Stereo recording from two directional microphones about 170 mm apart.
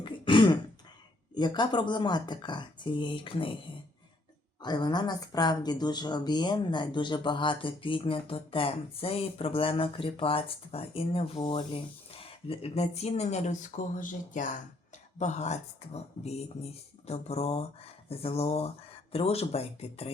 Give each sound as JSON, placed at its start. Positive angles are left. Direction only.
{"t": 0.0, "sound": "throat clearing", "side_deg": 30}
{"t": 1.4, "sound": "speech", "side_deg": 25}
{"t": 4.6, "sound": "speech", "side_deg": 25}